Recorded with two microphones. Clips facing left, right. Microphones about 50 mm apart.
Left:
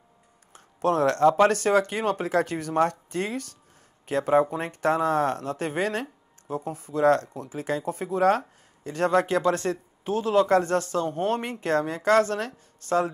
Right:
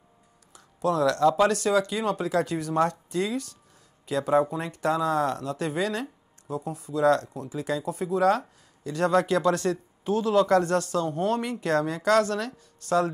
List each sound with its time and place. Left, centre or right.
0.5 s a woman's voice: left